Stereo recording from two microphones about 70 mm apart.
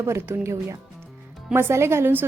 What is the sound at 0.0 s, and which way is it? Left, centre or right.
A woman's voice, right.